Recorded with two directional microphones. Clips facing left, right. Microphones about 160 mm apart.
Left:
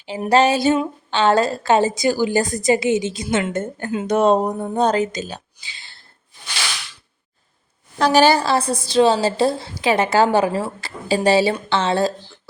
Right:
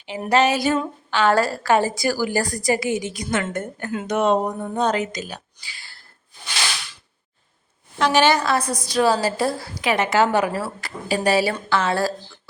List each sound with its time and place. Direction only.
0.3 s a woman's voice: 30° left (ahead or behind)
7.9 s a woman's voice: 35° left (ahead or behind)